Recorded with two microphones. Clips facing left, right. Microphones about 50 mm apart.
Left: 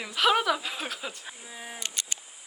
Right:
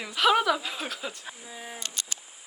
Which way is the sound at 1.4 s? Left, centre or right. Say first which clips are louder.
Even; centre.